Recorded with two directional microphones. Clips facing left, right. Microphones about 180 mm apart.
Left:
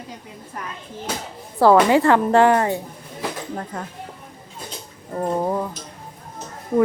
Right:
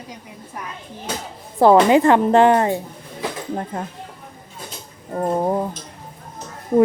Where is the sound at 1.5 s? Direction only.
20° right (ahead or behind).